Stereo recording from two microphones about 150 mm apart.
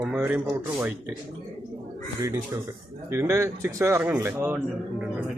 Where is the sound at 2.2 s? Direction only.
25° right (ahead or behind).